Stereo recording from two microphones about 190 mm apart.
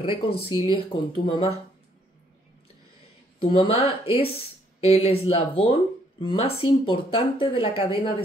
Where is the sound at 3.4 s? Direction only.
30° left (ahead or behind).